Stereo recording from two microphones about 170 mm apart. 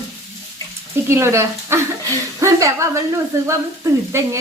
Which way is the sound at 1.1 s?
15° right (ahead or behind).